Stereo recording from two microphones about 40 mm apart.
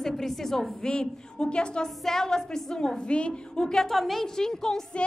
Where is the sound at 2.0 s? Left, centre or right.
Centre.